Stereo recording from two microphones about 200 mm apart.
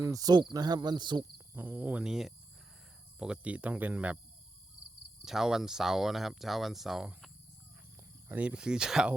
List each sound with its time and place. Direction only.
0.0 s speech: 20° right (ahead or behind)
1.5 s speech: 10° right (ahead or behind)
5.2 s speech: centre (ahead or behind)
8.3 s speech: 5° right (ahead or behind)